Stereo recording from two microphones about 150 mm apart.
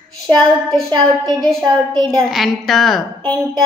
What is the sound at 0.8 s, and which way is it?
Speech, 30° right (ahead or behind).